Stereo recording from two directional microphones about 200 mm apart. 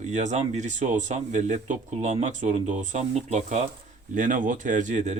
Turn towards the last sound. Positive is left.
turn(degrees=-35)  # may be behind; listen again after turning